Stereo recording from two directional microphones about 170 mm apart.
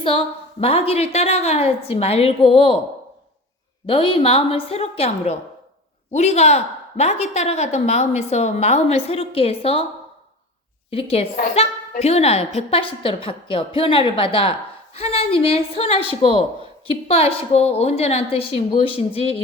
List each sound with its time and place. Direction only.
0.6 s a woman's voice: 35° left (ahead or behind)
3.8 s a woman's voice: 30° left (ahead or behind)
10.9 s a woman's voice: 35° left (ahead or behind)